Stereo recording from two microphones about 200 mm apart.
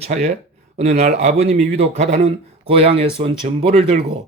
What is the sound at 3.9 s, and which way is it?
Speech, 50° right (ahead or behind).